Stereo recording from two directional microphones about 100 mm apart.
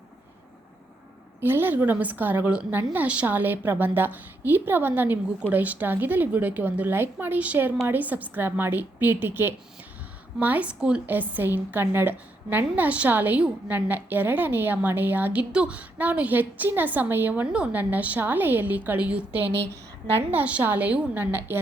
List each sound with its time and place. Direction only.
1.4 s a woman's voice: 20° right (ahead or behind)